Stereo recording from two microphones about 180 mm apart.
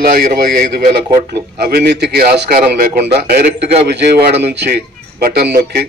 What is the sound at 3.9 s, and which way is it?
A man's voice, 65° right (ahead or behind).